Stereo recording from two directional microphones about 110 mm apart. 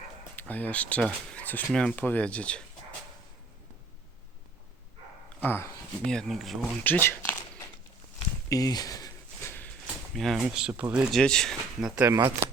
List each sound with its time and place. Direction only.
0.3 s speech: 15° left (ahead or behind)
5.4 s speech: 20° left (ahead or behind)
6.1 s speech: 5° left (ahead or behind)
6.8 s a sound: 20° left (ahead or behind)
8.4 s speech: 35° left (ahead or behind)
10.2 s speech: centre (ahead or behind)
10.7 s speech: 20° right (ahead or behind)
11.1 s speech: 5° left (ahead or behind)
12.0 s speech: 25° right (ahead or behind)